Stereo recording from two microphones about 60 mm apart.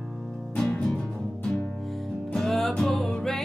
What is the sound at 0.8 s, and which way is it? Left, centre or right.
Music, centre.